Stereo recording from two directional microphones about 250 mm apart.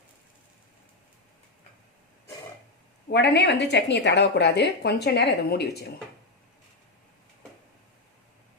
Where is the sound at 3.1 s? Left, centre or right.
Left.